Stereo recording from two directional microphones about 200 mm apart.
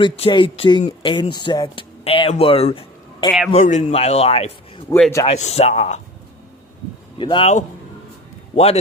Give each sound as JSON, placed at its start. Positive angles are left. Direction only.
{"t": 0.0, "sound": "speech", "side_deg": 25}
{"t": 3.5, "sound": "speech", "side_deg": 35}
{"t": 4.9, "sound": "speech", "side_deg": 20}
{"t": 5.3, "sound": "speech", "side_deg": 30}
{"t": 7.2, "sound": "speech", "side_deg": 25}